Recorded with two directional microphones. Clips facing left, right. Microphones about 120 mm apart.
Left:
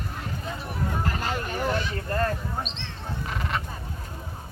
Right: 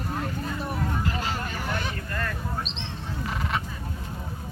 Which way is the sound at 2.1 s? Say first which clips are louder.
Left 9 dB; 35° left (ahead or behind).